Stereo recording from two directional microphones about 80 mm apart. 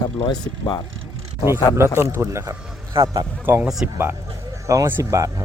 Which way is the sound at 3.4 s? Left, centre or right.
Right.